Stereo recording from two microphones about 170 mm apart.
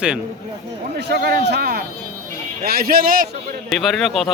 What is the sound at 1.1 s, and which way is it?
A man's voice, 70° right (ahead or behind).